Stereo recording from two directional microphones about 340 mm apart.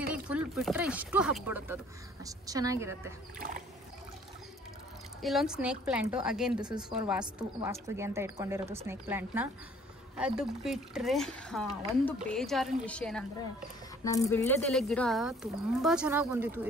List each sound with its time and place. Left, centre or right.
0.1 s a woman's voice: centre
3.3 s a sound: right
5.2 s a woman's voice: centre